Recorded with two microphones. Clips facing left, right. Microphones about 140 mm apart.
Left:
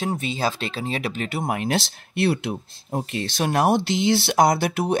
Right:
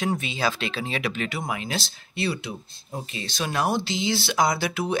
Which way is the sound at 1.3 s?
55° left (ahead or behind).